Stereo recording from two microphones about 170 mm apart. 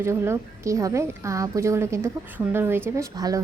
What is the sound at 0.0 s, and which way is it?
A woman's voice, 15° right (ahead or behind).